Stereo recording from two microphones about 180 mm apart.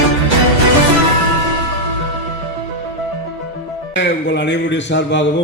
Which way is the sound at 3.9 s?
80° left.